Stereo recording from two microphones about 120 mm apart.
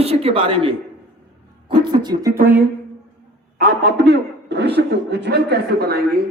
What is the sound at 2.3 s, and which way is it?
Speech, 15° right (ahead or behind).